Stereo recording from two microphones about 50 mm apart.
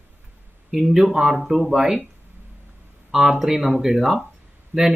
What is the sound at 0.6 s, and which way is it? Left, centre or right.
Speech, centre.